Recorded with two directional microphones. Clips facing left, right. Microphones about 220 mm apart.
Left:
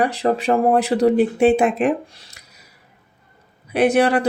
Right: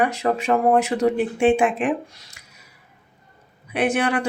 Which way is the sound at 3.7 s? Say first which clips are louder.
Left 5 dB; 40° left (ahead or behind).